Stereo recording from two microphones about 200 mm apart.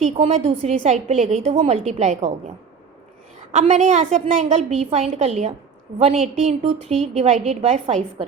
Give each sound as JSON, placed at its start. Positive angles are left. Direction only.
{"t": 0.0, "sound": "a woman's voice", "side_deg": -35}
{"t": 3.5, "sound": "a woman's voice", "side_deg": -35}